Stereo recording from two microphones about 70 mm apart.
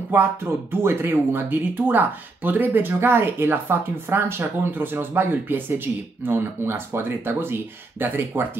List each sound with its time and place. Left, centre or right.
0.1 s speech: right